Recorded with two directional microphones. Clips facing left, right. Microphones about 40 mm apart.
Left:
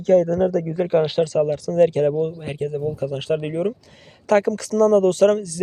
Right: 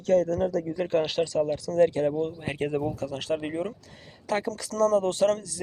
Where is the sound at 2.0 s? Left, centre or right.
Left.